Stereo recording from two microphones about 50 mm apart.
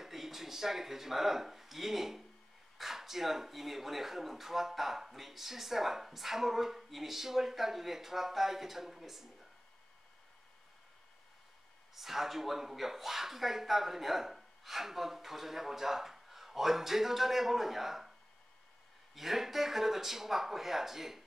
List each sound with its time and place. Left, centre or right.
0.0 s speech: centre
11.9 s speech: centre
19.1 s speech: centre